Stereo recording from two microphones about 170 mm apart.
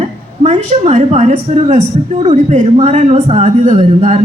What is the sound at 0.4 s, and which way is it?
A woman's voice, 40° right (ahead or behind).